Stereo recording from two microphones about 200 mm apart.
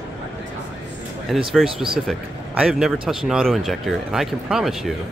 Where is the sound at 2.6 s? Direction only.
5° right (ahead or behind).